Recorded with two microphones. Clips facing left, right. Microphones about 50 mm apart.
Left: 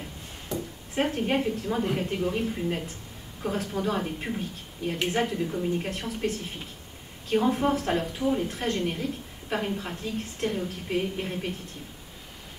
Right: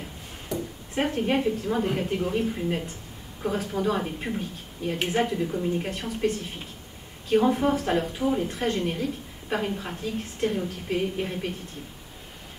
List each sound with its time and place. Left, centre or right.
0.6 s a woman's voice: centre